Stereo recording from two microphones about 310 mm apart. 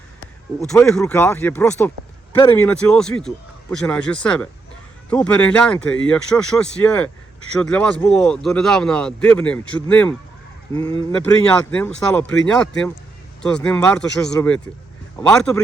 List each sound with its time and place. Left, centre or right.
0.6 s a man's voice: centre